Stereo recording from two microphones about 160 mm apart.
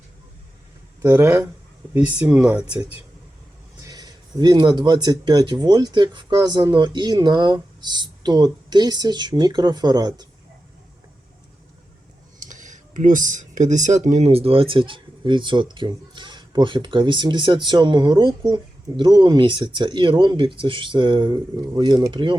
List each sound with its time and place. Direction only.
1.0 s speech: 15° right (ahead or behind)
3.8 s speech: 25° right (ahead or behind)
12.4 s speech: 50° right (ahead or behind); by 22.4 s 30° right (ahead or behind)